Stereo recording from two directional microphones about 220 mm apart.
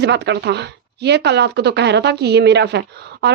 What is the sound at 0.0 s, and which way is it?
Speech, 50° right (ahead or behind).